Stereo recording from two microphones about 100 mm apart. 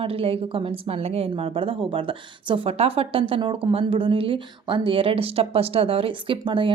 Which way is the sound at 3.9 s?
65° right (ahead or behind).